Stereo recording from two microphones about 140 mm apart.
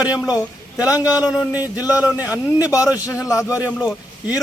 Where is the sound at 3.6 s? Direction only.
10° right (ahead or behind).